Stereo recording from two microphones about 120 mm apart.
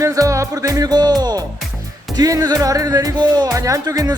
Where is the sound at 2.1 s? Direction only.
30° right (ahead or behind).